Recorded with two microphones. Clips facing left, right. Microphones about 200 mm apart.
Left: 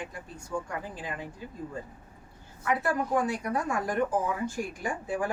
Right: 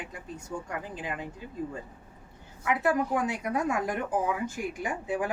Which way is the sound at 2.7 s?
20° right (ahead or behind).